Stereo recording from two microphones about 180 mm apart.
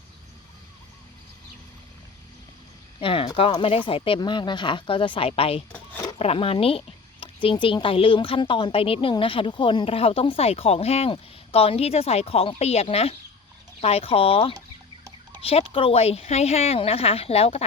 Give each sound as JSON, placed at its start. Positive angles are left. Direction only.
{"t": 3.0, "sound": "speech", "side_deg": 30}
{"t": 5.7, "sound": "a sound", "side_deg": 10}
{"t": 6.1, "sound": "a woman's voice", "side_deg": 30}